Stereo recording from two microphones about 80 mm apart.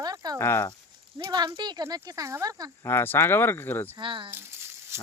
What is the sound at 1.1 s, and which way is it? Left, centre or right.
Speech, right.